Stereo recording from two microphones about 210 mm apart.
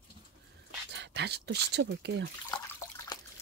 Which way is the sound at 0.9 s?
55° right (ahead or behind).